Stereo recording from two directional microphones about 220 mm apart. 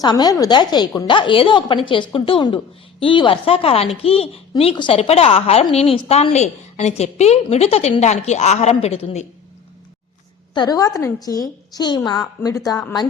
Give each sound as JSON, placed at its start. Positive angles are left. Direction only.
{"t": 0.0, "sound": "a woman's voice", "side_deg": 20}
{"t": 10.5, "sound": "a woman's voice", "side_deg": 20}